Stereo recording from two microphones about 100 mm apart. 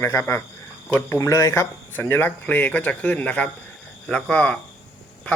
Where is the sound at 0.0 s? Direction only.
20° left (ahead or behind).